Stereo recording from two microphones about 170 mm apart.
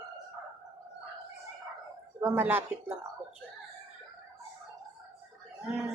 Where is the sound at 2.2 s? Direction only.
10° right (ahead or behind).